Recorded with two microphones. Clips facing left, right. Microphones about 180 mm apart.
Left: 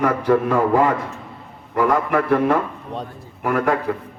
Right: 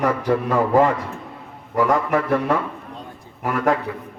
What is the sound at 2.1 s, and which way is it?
Speech, 50° left (ahead or behind).